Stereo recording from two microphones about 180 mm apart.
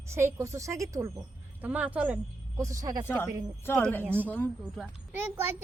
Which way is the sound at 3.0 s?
10° left (ahead or behind).